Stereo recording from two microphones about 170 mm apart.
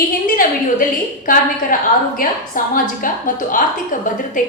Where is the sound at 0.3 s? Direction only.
55° left (ahead or behind).